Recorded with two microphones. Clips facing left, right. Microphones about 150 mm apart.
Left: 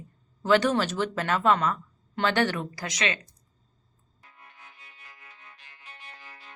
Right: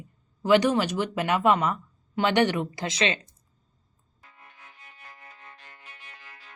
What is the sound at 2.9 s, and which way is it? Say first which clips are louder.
Speech: right 3 dB; 30° right (ahead or behind).